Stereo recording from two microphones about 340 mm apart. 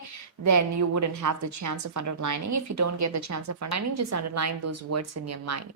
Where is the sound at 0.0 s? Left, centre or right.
Right.